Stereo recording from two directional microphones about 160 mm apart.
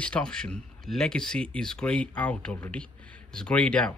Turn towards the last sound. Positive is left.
turn(degrees=5)  # may be behind; listen again after turning